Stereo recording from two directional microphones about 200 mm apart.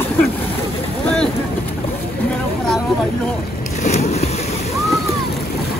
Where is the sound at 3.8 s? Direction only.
35° left (ahead or behind).